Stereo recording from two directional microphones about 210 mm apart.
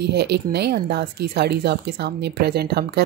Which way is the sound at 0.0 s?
55° right (ahead or behind).